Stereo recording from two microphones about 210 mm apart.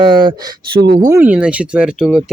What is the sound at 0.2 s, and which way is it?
Speech, 20° right (ahead or behind).